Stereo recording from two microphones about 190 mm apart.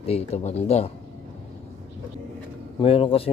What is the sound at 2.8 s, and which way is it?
Speech, 30° left (ahead or behind).